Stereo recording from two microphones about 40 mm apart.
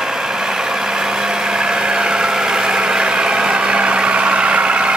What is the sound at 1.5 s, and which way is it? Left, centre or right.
Vehicle, centre.